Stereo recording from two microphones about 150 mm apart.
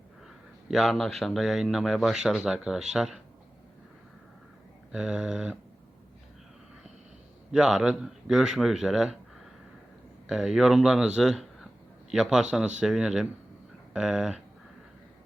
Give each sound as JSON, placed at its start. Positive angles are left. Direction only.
{"t": 0.7, "sound": "speech", "side_deg": 0}
{"t": 4.9, "sound": "speech", "side_deg": -5}
{"t": 7.5, "sound": "speech", "side_deg": -5}
{"t": 10.2, "sound": "speech", "side_deg": -5}
{"t": 11.2, "sound": "a sound", "side_deg": 0}
{"t": 12.1, "sound": "speech", "side_deg": -5}